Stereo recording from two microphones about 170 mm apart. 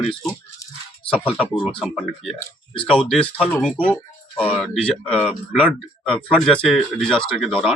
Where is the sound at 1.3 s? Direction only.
5° right (ahead or behind).